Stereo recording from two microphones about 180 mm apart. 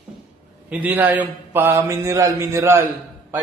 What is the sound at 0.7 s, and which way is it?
A man's voice, 10° right (ahead or behind).